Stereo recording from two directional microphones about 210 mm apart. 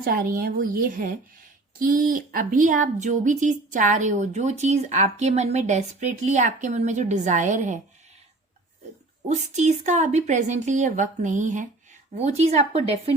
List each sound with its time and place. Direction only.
0.0 s a woman's voice: 45° right (ahead or behind)
9.3 s speech: 35° right (ahead or behind)